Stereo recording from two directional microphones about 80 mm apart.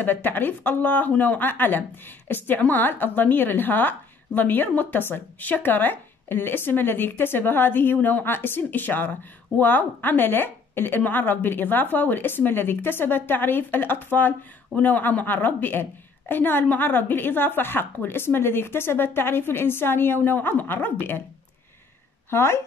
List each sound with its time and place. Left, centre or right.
0.0 s speech: left
22.3 s speech: left